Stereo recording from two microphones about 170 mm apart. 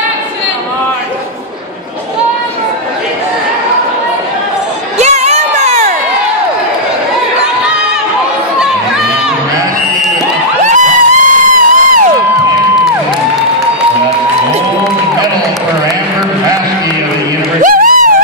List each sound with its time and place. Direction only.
4.9 s crowd: 40° right (ahead or behind)
10.6 s crowd: 45° right (ahead or behind)
17.6 s a sound: 55° right (ahead or behind)